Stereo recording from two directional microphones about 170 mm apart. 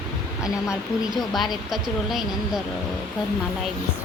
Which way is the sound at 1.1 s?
Centre (ahead or behind).